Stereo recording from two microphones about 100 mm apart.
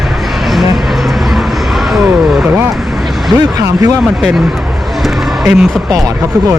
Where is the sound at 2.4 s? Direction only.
20° right (ahead or behind).